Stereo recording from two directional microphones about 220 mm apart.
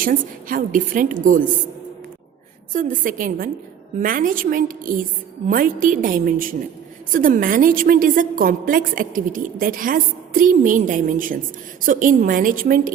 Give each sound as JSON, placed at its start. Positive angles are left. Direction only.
{"t": 0.0, "sound": "a woman's voice", "side_deg": -40}
{"t": 2.7, "sound": "a woman's voice", "side_deg": -40}